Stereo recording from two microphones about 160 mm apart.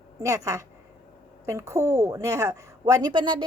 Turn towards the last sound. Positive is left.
turn(degrees=-30)  # may be behind; listen again after turning